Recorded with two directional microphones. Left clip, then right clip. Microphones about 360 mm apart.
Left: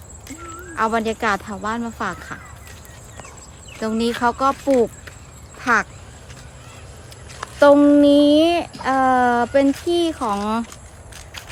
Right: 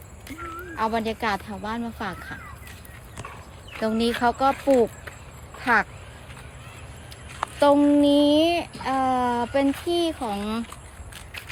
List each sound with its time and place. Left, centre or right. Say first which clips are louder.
0.8 s speech: left 5 dB; centre
3.8 s speech: left 2 dB; centre
7.6 s speech: left 6 dB; centre